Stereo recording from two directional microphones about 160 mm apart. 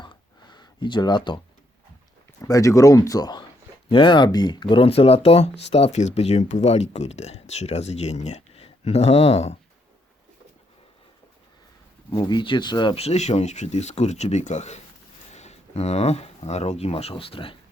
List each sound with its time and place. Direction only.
0.0 s a sound: 30° left (ahead or behind)
2.5 s speech: 20° left (ahead or behind); by 9.6 s 40° left (ahead or behind)
12.1 s speech: 30° left (ahead or behind)